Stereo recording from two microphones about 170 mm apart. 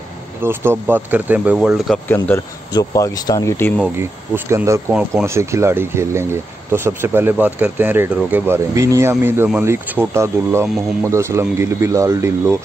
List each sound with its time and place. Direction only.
0.4 s speech: 10° right (ahead or behind)
2.0 s speech: 10° left (ahead or behind)
4.0 s speech: 15° right (ahead or behind)